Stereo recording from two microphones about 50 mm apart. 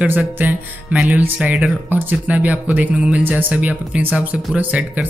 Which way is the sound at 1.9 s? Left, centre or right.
Right.